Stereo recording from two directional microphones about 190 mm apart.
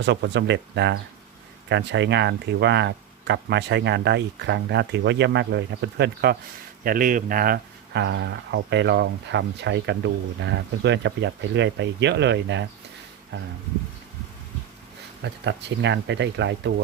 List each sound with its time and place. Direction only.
0.0 s speech: 65° right (ahead or behind)
6.8 s speech: 45° right (ahead or behind); by 12.6 s 70° right (ahead or behind)
15.2 s speech: 70° right (ahead or behind)